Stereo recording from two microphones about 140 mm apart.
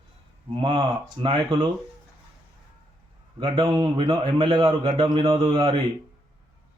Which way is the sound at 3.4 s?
40° right (ahead or behind).